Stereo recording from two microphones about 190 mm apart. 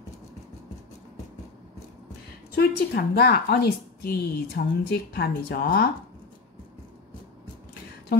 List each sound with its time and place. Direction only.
2.5 s a woman's voice: 55° left (ahead or behind)